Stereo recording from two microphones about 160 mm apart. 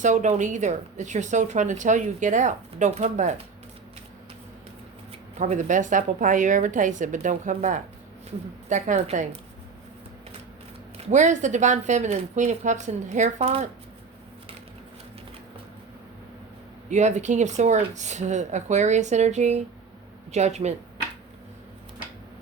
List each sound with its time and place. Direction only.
0.0 s a woman's voice: 50° right (ahead or behind)
5.4 s a woman's voice: 50° right (ahead or behind)
10.9 s a woman's voice: 50° right (ahead or behind)
16.9 s a woman's voice: 45° right (ahead or behind)